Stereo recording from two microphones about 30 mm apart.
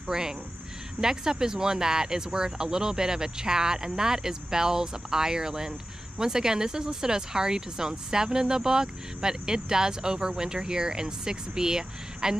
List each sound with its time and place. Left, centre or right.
0.1 s speech: right